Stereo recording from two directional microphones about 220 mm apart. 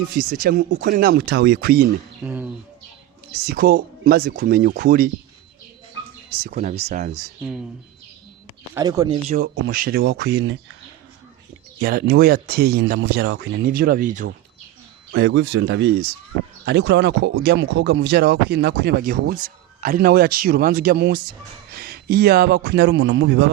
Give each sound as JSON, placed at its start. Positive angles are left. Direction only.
{"t": 0.1, "sound": "speech", "side_deg": -45}
{"t": 2.2, "sound": "speech", "side_deg": -5}
{"t": 3.3, "sound": "speech", "side_deg": -45}
{"t": 6.3, "sound": "speech", "side_deg": -45}
{"t": 8.7, "sound": "speech", "side_deg": -15}
{"t": 9.3, "sound": "speech", "side_deg": -40}
{"t": 11.8, "sound": "speech", "side_deg": -45}
{"t": 15.1, "sound": "speech", "side_deg": -55}